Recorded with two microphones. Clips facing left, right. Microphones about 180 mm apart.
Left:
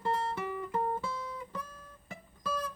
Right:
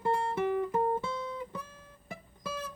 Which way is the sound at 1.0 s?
25° right (ahead or behind).